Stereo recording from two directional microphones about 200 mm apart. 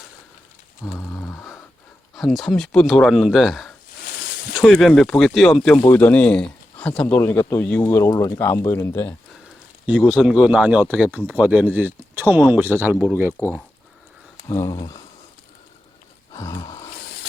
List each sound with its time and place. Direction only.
0.9 s a sound: 10° left (ahead or behind)
2.1 s speech: centre (ahead or behind)
4.0 s a sound: 50° left (ahead or behind)
4.5 s speech: centre (ahead or behind)
10.1 s speech: 5° right (ahead or behind)
11.1 s speech: 5° left (ahead or behind)
11.3 s speech: 5° right (ahead or behind)
13.4 s speech: 10° left (ahead or behind)
16.3 s a sound: 15° left (ahead or behind)